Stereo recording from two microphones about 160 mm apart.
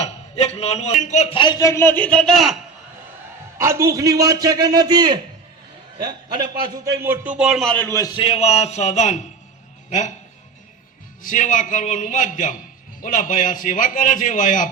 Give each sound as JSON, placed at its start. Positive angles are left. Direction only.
{"t": 0.0, "sound": "a man's voice", "side_deg": 40}
{"t": 1.4, "sound": "a man's voice", "side_deg": 25}
{"t": 3.6, "sound": "a man's voice", "side_deg": -20}
{"t": 7.8, "sound": "a man's voice", "side_deg": 20}
{"t": 8.2, "sound": "a man's voice", "side_deg": 35}
{"t": 11.2, "sound": "a man's voice", "side_deg": 55}